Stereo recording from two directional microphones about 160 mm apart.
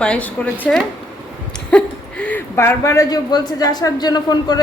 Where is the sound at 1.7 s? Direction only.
5° left (ahead or behind).